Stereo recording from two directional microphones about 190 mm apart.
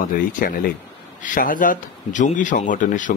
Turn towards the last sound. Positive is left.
turn(degrees=45)  # may be behind; listen again after turning